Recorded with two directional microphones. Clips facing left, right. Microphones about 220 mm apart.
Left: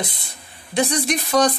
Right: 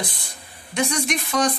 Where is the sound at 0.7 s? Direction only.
35° left (ahead or behind).